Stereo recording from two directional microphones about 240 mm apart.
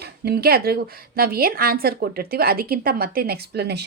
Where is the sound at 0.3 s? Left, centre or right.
Right.